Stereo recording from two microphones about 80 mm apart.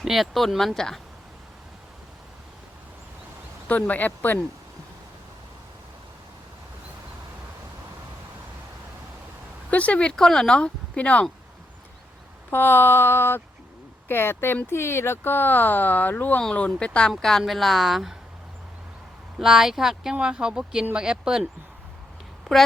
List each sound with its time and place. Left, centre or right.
0.0 s a woman's voice: centre
3.7 s speech: centre
9.6 s speech: centre
12.5 s a woman's voice: left; by 18.2 s centre
19.4 s speech: centre
22.5 s a woman's voice: centre